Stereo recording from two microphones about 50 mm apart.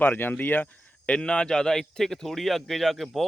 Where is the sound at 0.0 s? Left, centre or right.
Left.